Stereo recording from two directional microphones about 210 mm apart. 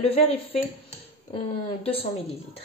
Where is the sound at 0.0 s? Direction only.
30° left (ahead or behind).